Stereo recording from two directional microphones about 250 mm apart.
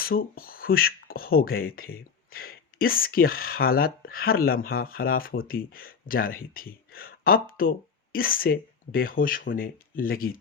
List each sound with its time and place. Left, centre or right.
0.0 s speech: left